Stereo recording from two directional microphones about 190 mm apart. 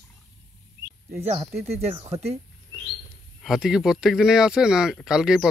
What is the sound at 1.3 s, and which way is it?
Speech, 35° right (ahead or behind).